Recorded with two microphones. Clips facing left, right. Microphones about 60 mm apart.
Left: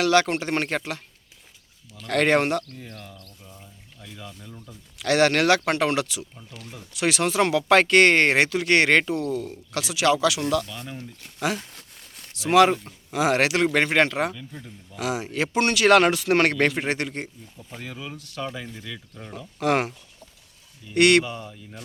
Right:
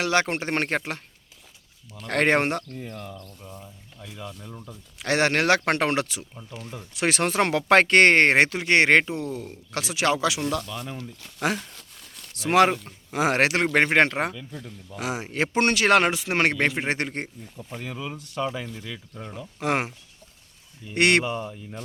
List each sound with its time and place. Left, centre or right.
0.0 s speech: right
2.8 s speech: centre
4.9 s speech: right
9.7 s speech: right
10.7 s speech: centre
11.3 s speech: right
17.7 s speech: centre
18.1 s speech: right
18.4 s speech: centre; by 21.8 s right